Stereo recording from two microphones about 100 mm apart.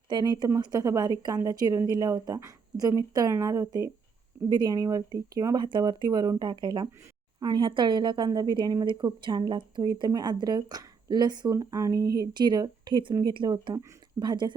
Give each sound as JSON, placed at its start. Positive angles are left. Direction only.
{"t": 0.1, "sound": "speech", "side_deg": -45}
{"t": 4.4, "sound": "speech", "side_deg": -50}
{"t": 4.8, "sound": "speech", "side_deg": -35}
{"t": 5.6, "sound": "speech", "side_deg": -50}